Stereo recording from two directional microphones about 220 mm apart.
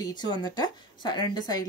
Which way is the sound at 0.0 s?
20° left (ahead or behind).